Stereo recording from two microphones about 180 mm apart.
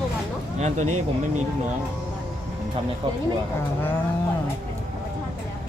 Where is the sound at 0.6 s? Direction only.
40° right (ahead or behind).